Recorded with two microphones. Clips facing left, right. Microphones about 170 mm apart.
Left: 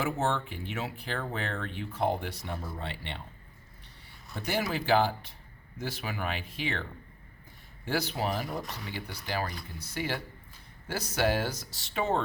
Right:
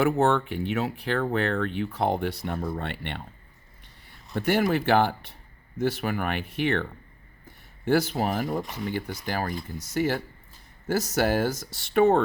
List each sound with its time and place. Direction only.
0.0 s speech: 60° right (ahead or behind)
4.4 s speech: 60° right (ahead or behind)
7.9 s speech: 50° right (ahead or behind)